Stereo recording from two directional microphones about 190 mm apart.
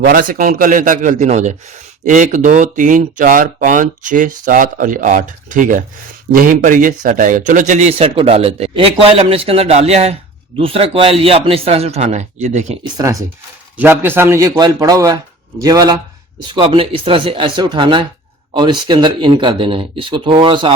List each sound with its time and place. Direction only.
0.0 s a man's voice: 45° right (ahead or behind)
12.8 s a man's voice: 20° right (ahead or behind)